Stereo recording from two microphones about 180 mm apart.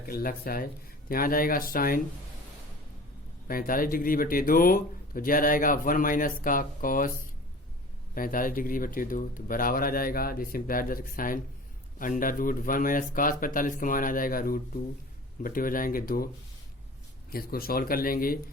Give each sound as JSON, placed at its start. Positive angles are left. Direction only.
{"t": 0.0, "sound": "speech", "side_deg": 55}
{"t": 3.4, "sound": "speech", "side_deg": 50}
{"t": 8.1, "sound": "speech", "side_deg": 50}
{"t": 17.3, "sound": "speech", "side_deg": 55}